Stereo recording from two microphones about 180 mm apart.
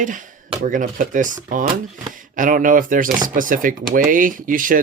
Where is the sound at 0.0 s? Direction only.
45° right (ahead or behind).